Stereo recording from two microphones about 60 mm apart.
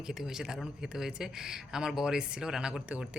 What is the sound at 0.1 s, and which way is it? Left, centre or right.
Speech, centre.